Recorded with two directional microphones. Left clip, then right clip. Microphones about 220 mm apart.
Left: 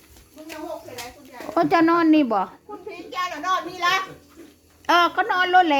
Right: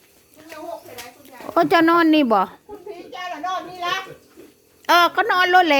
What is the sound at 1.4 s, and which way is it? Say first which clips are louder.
Speech: right 3 dB; 25° right (ahead or behind).